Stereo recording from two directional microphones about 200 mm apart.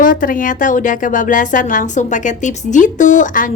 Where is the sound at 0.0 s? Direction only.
40° left (ahead or behind).